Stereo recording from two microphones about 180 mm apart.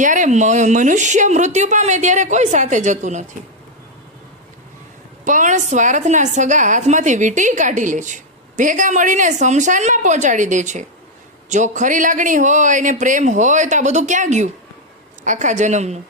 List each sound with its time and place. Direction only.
0.0 s speech: 45° right (ahead or behind)
5.2 s a woman's voice: 45° right (ahead or behind)